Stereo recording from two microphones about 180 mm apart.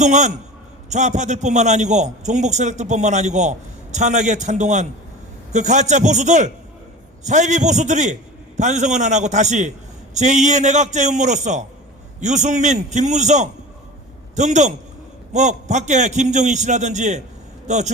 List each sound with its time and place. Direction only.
0.0 s a man's voice: 40° right (ahead or behind)